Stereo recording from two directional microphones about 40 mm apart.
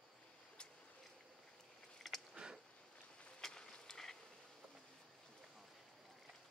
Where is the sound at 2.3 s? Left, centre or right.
Centre.